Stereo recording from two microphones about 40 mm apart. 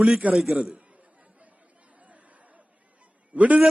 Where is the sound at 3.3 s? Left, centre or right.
Right.